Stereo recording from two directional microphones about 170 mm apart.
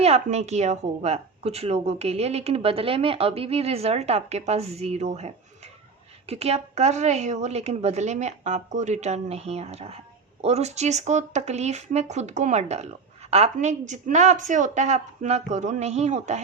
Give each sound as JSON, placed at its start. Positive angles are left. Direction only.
{"t": 0.0, "sound": "a woman's voice", "side_deg": -40}